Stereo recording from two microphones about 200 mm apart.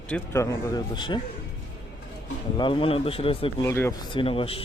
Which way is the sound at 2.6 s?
25° left (ahead or behind).